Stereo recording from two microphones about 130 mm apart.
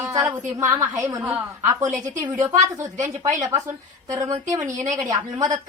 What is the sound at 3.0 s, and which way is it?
A woman's voice, 25° right (ahead or behind).